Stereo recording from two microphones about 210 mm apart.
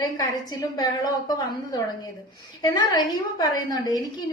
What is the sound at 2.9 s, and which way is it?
A woman's voice, 20° left (ahead or behind).